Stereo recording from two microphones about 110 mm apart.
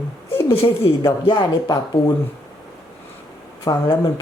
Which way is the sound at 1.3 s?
40° left (ahead or behind).